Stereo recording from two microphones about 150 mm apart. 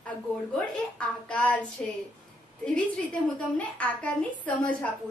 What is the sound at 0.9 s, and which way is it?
A woman's voice, 10° left (ahead or behind).